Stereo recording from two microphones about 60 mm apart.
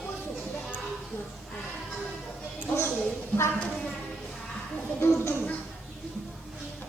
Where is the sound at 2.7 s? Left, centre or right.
Left.